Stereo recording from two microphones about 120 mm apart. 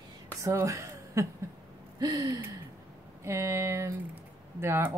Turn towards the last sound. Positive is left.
turn(degrees=-20)  # may be behind; listen again after turning